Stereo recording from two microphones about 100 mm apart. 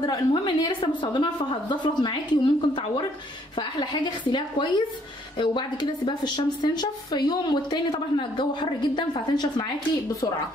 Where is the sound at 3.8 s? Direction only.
50° left (ahead or behind).